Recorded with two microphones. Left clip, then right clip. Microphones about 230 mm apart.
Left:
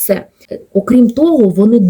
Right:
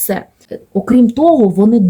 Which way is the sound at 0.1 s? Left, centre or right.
Centre.